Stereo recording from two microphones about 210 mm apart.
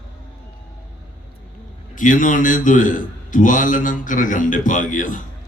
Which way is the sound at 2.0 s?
40° left (ahead or behind).